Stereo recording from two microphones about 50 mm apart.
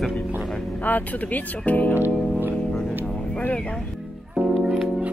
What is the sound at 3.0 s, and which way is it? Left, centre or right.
Vehicle, centre.